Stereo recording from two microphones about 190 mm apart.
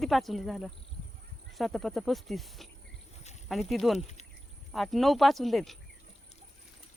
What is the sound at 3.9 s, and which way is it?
Speech, 35° left (ahead or behind).